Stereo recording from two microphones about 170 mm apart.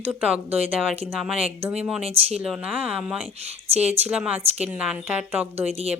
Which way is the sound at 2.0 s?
35° right (ahead or behind).